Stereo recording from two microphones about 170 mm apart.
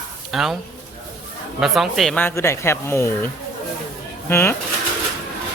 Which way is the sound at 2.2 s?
15° left (ahead or behind).